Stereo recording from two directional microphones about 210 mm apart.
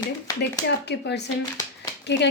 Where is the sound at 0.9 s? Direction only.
55° left (ahead or behind).